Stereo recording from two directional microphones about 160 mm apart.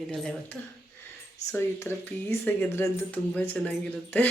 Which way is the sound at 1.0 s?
15° left (ahead or behind).